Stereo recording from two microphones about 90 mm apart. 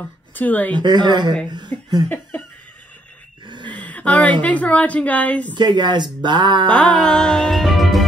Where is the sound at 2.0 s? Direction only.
20° left (ahead or behind).